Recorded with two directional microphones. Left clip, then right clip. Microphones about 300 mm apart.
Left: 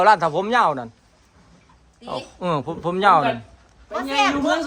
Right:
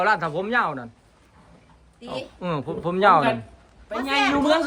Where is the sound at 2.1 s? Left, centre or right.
Centre.